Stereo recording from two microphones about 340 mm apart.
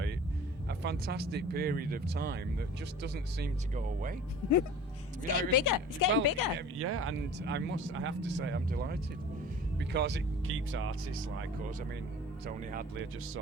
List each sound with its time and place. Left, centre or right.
0.7 s speech: right
5.4 s a woman's voice: left
6.2 s speech: left
6.6 s speech: right